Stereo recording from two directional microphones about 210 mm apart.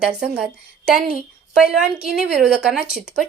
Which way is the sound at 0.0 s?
5° right (ahead or behind).